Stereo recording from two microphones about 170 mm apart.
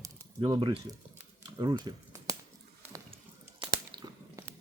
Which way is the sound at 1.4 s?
20° right (ahead or behind).